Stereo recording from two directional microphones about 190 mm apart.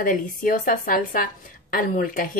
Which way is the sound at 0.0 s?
45° left (ahead or behind).